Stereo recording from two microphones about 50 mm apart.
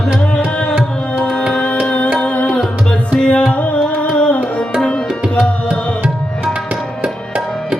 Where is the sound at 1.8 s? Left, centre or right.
Left.